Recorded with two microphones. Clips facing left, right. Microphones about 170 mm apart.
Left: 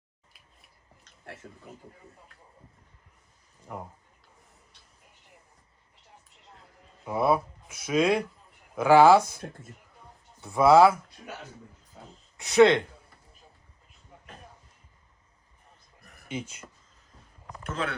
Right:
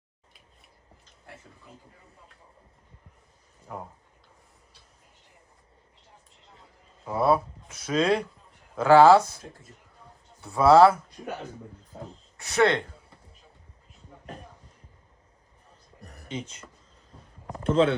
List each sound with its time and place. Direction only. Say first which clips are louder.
6.5 s a sound: left 1 dB; centre (ahead or behind)
7.1 s speech: right 2 dB; 15° left (ahead or behind)
10.4 s speech: right 1 dB; 15° left (ahead or behind)
12.4 s speech: left 4 dB; 15° left (ahead or behind)
16.3 s speech: even; 10° left (ahead or behind)
17.4 s a sound: right 11 dB; 30° right (ahead or behind)